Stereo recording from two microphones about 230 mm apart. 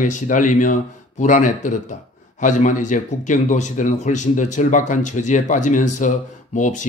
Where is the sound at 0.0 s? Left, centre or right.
Left.